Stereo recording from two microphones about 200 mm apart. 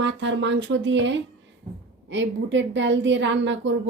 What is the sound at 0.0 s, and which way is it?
Speech, 65° right (ahead or behind).